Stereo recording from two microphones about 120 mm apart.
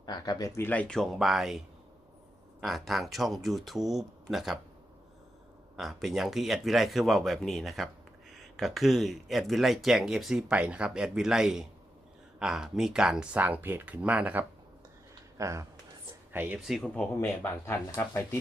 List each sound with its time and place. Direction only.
0.0 s speech: 35° left (ahead or behind)
0.7 s speech: 10° left (ahead or behind)
5.7 s speech: centre (ahead or behind)
15.4 s speech: 25° right (ahead or behind)
16.6 s speech: centre (ahead or behind)
16.9 s speech: 15° left (ahead or behind)